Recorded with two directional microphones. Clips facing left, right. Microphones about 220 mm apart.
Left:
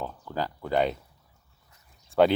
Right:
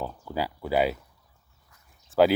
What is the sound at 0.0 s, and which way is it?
Speech, 10° right (ahead or behind).